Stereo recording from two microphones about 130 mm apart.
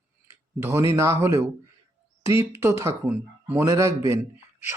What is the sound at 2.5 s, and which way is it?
Speech, 20° right (ahead or behind).